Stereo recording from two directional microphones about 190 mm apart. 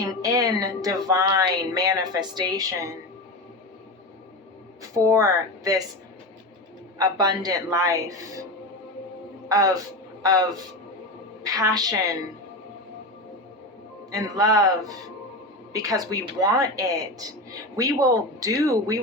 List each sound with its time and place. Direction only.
0.0 s speech: 20° right (ahead or behind)
4.8 s speech: 15° right (ahead or behind)
7.0 s speech: 20° right (ahead or behind)
9.5 s speech: 15° right (ahead or behind)
11.4 s speech: 20° right (ahead or behind)
14.1 s speech: 20° right (ahead or behind)